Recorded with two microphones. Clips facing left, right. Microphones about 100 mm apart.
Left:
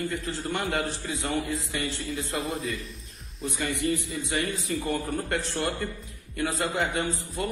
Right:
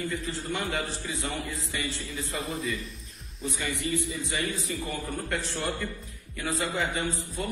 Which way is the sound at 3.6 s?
45° left (ahead or behind).